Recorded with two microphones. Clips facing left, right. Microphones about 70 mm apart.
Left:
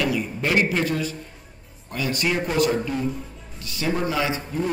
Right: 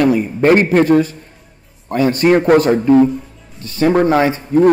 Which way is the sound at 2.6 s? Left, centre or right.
Right.